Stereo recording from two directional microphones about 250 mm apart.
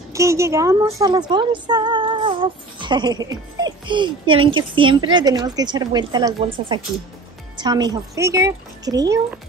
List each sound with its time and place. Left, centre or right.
0.1 s speech: centre